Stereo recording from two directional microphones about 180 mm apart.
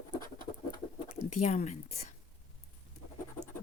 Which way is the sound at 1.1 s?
40° left (ahead or behind).